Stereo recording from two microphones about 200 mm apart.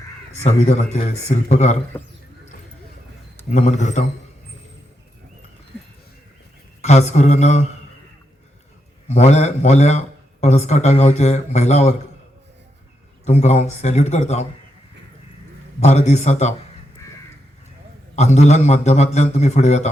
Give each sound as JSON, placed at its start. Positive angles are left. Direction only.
{"t": 0.7, "sound": "a man's voice", "side_deg": 35}
{"t": 3.5, "sound": "a man's voice", "side_deg": 35}
{"t": 6.8, "sound": "a man's voice", "side_deg": 35}
{"t": 9.0, "sound": "a man's voice", "side_deg": 35}
{"t": 13.2, "sound": "a man's voice", "side_deg": 35}
{"t": 15.8, "sound": "a man's voice", "side_deg": 35}
{"t": 18.2, "sound": "a man's voice", "side_deg": 35}